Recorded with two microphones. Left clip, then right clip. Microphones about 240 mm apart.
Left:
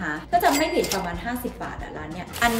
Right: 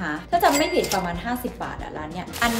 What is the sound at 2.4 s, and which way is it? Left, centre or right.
Speech, centre.